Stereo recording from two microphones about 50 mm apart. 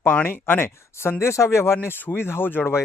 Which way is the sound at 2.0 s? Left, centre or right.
Left.